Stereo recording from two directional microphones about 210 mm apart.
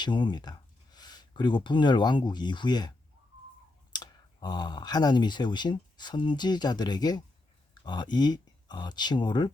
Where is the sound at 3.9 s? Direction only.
20° left (ahead or behind).